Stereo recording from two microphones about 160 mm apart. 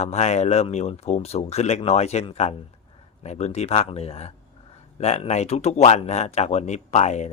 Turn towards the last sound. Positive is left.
turn(degrees=45)  # may be behind; listen again after turning